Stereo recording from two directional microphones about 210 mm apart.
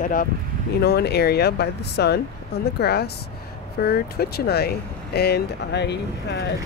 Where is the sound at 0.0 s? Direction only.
40° left (ahead or behind).